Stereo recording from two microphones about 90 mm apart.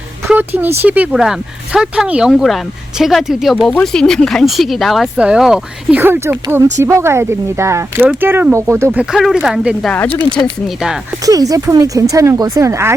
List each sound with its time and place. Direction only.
0.3 s speech: 20° right (ahead or behind)
1.1 s speech: 5° right (ahead or behind)
3.7 s speech: 10° left (ahead or behind)
5.1 s speech: 10° right (ahead or behind)
5.9 s speech: 25° right (ahead or behind)
9.1 s speech: centre (ahead or behind)
9.9 s speech: 20° left (ahead or behind)
11.3 s speech: 40° right (ahead or behind)